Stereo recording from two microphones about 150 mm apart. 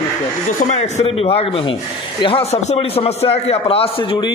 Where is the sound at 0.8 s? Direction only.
45° left (ahead or behind).